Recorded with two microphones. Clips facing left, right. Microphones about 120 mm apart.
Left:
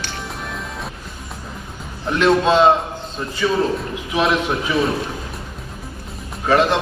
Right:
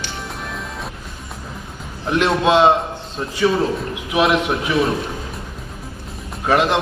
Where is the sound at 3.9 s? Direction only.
10° right (ahead or behind).